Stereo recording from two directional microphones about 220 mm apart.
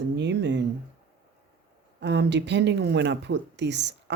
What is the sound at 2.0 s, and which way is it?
Speech, 50° right (ahead or behind).